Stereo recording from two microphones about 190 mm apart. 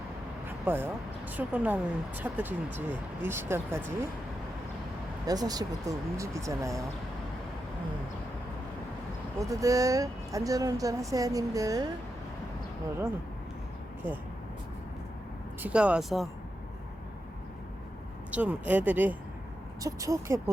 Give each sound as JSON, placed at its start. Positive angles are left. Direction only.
{"t": 0.4, "sound": "vehicle", "side_deg": -10}
{"t": 1.3, "sound": "speech", "side_deg": -10}
{"t": 5.2, "sound": "speech", "side_deg": -20}
{"t": 9.4, "sound": "speech", "side_deg": -15}
{"t": 15.6, "sound": "speech", "side_deg": -5}
{"t": 18.3, "sound": "speech", "side_deg": -10}